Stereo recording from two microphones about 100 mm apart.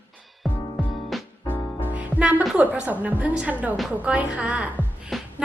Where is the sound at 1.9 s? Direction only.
15° right (ahead or behind).